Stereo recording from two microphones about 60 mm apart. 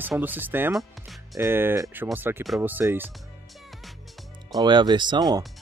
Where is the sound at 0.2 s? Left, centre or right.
Right.